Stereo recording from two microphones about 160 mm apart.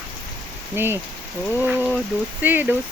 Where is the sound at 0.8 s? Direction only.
15° right (ahead or behind).